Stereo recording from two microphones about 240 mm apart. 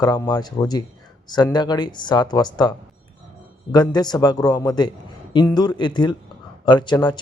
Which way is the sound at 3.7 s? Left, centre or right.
Centre.